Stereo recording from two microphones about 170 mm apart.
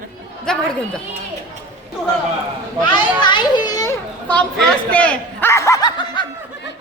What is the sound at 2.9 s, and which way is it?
A child's voice, 25° left (ahead or behind).